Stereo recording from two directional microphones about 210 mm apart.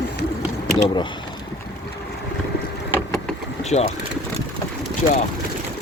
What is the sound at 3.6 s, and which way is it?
Speech, 30° left (ahead or behind).